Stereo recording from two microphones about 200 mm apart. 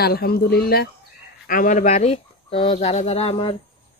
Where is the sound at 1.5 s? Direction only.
40° left (ahead or behind).